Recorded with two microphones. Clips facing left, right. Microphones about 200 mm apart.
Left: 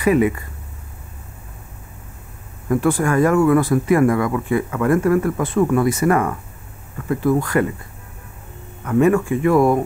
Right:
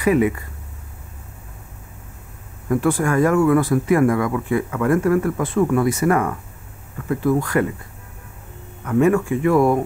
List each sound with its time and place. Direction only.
0.0 s speech: 20° left (ahead or behind)
2.7 s speech: 15° left (ahead or behind)
8.8 s speech: 20° left (ahead or behind)
9.6 s speech: 30° left (ahead or behind)